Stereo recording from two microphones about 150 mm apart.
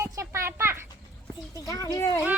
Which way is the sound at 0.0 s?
15° right (ahead or behind).